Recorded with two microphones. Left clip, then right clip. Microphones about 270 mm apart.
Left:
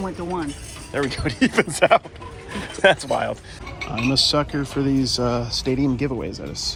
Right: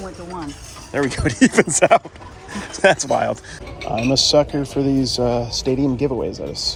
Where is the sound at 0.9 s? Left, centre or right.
Right.